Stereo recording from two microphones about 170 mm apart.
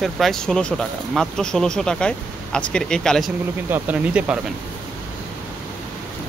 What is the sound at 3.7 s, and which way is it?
Speech, 10° right (ahead or behind).